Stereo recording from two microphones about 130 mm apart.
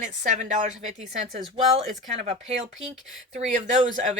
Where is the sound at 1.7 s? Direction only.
50° right (ahead or behind).